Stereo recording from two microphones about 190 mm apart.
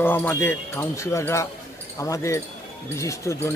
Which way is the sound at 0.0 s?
10° left (ahead or behind).